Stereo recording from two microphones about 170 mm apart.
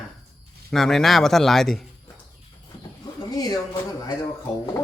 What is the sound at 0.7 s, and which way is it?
Speech, centre (ahead or behind).